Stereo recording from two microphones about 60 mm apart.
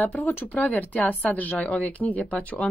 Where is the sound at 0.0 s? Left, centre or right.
Left.